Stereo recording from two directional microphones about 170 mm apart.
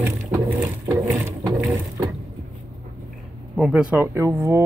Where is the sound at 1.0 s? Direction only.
5° right (ahead or behind).